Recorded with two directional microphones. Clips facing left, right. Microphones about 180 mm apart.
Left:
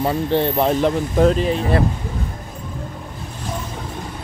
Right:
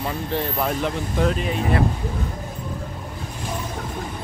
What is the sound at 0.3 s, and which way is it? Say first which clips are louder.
Speech: left 6 dB; 30° left (ahead or behind).